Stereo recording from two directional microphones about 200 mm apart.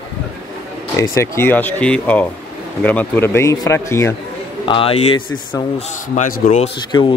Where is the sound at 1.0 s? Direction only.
15° left (ahead or behind).